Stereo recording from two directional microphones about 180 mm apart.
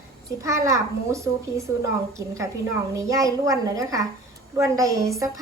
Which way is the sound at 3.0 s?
20° right (ahead or behind).